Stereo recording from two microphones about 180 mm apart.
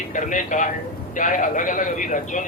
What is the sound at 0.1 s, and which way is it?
A man's voice, 45° left (ahead or behind).